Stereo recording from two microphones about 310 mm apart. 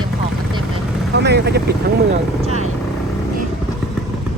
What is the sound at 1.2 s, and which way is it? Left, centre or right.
Speech, right.